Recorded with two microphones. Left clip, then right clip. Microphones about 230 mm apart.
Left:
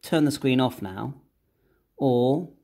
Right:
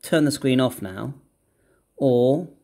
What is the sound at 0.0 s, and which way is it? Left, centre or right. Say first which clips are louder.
Speech: right 3 dB; centre.